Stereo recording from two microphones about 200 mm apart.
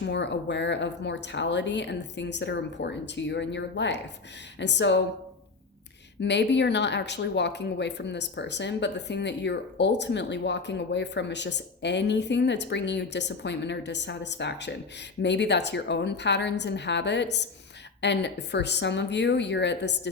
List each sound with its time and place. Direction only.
0.0 s speech: 60° left (ahead or behind)
6.1 s speech: 60° left (ahead or behind)